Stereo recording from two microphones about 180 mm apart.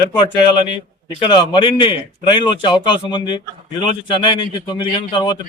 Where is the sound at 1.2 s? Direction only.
25° left (ahead or behind).